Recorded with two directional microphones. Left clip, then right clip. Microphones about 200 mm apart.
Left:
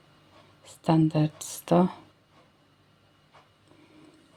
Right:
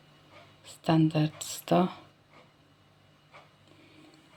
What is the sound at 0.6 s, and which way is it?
Speech, 20° left (ahead or behind).